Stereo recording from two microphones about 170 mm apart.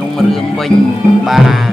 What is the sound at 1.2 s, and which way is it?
Music, centre (ahead or behind).